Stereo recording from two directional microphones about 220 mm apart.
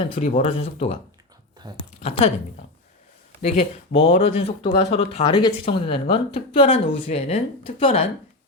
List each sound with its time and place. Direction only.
0.0 s speech: 25° left (ahead or behind)
2.0 s a woman's voice: 30° left (ahead or behind)
3.4 s speech: 30° left (ahead or behind)